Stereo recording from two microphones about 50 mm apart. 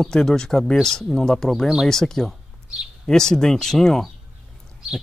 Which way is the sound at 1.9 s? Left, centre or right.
Centre.